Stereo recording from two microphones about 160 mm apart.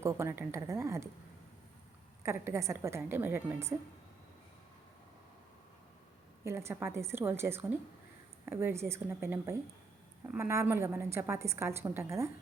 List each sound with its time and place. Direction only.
0.0 s a woman's voice: 15° right (ahead or behind)
2.2 s a woman's voice: 15° right (ahead or behind)
6.4 s a woman's voice: 15° right (ahead or behind)